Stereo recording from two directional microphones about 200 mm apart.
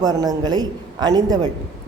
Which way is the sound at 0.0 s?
20° right (ahead or behind).